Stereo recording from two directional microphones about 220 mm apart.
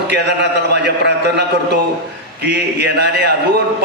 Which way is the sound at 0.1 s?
50° right (ahead or behind).